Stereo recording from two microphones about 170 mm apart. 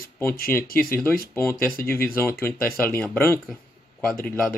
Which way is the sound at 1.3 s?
10° left (ahead or behind).